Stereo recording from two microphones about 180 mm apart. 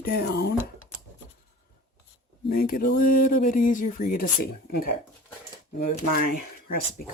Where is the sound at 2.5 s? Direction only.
55° left (ahead or behind).